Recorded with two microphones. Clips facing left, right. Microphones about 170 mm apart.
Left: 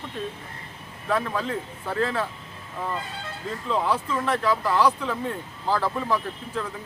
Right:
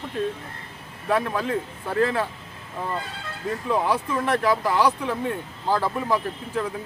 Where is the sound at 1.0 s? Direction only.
10° right (ahead or behind).